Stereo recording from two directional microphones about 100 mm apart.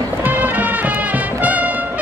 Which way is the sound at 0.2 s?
20° right (ahead or behind).